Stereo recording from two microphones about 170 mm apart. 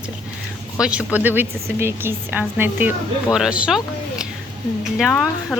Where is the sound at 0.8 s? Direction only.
5° right (ahead or behind).